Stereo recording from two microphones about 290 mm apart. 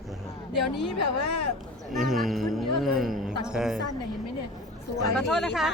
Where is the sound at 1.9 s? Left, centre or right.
Centre.